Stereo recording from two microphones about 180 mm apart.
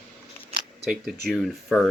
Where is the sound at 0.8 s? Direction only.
5° right (ahead or behind).